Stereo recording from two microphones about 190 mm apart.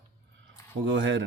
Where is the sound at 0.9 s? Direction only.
75° right (ahead or behind).